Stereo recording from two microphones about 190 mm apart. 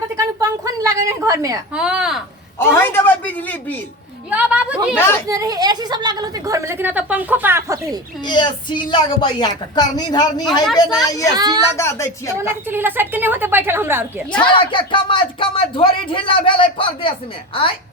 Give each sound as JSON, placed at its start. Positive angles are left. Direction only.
{"t": 0.2, "sound": "a sound", "side_deg": -15}
{"t": 1.7, "sound": "speech", "side_deg": -5}
{"t": 2.7, "sound": "speech", "side_deg": 10}
{"t": 4.3, "sound": "a woman's voice", "side_deg": -5}
{"t": 4.9, "sound": "speech", "side_deg": 10}
{"t": 5.3, "sound": "a woman's voice", "side_deg": -20}
{"t": 8.3, "sound": "speech", "side_deg": 25}
{"t": 11.3, "sound": "a woman's voice", "side_deg": -20}
{"t": 11.8, "sound": "speech", "side_deg": 15}
{"t": 12.3, "sound": "a woman's voice", "side_deg": -10}
{"t": 14.3, "sound": "speech", "side_deg": 25}